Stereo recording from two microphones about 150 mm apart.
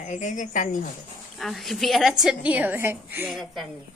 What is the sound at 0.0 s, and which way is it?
Speech, 55° left (ahead or behind).